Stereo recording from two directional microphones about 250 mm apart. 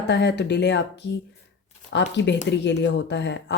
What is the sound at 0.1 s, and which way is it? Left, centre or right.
Speech, left.